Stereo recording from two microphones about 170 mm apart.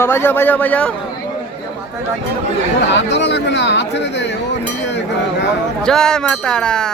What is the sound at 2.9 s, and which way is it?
Speech, 90° left.